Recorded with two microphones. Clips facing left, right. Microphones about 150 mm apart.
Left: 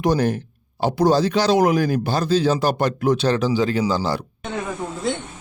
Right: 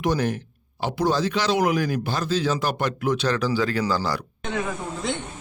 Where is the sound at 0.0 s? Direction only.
35° left (ahead or behind).